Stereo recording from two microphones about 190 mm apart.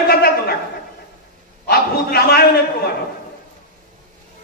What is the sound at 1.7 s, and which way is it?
Speech, 55° left (ahead or behind).